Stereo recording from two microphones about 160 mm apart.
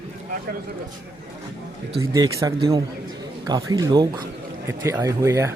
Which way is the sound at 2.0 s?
20° right (ahead or behind).